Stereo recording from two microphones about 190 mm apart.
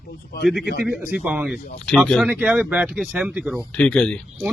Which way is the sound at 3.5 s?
5° left (ahead or behind).